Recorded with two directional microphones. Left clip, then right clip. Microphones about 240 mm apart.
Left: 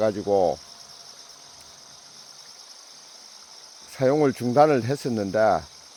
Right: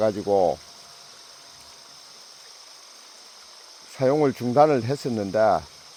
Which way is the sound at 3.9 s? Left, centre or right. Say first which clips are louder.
Even; centre.